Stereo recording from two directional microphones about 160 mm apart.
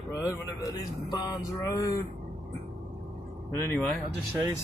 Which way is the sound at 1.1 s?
20° left (ahead or behind).